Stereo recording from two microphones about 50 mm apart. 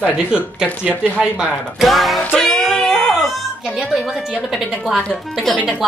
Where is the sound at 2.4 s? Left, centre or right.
Centre.